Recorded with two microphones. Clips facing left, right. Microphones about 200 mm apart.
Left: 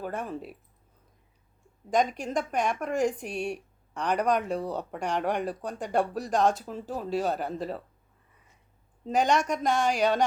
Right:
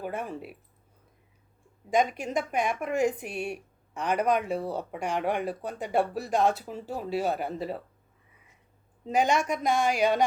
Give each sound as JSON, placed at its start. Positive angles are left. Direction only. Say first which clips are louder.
{"t": 0.0, "sound": "speech", "louder": "even", "side_deg": -10}
{"t": 1.9, "sound": "speech", "louder": "even", "side_deg": -5}
{"t": 9.0, "sound": "speech", "louder": "even", "side_deg": -10}